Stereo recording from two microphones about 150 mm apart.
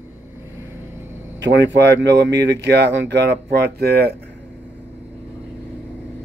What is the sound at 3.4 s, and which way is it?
Speech, 90° right.